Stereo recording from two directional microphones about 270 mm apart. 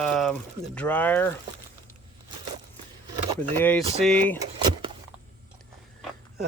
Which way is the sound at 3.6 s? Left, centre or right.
Centre.